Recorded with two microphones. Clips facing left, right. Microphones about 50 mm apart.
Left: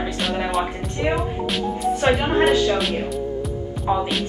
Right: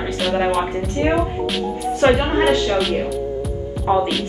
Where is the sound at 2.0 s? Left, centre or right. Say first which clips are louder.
Right 4 dB; centre.